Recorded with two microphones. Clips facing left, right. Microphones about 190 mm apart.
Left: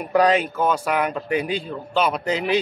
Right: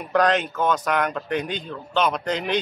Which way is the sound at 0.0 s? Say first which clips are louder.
Left 2 dB; 10° left (ahead or behind).